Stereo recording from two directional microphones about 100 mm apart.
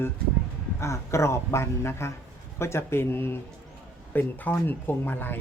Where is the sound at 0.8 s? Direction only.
30° left (ahead or behind).